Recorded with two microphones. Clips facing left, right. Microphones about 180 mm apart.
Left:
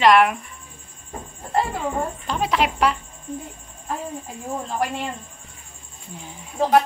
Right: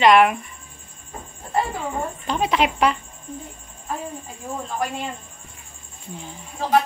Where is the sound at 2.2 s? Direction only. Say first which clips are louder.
Right 3 dB; centre (ahead or behind).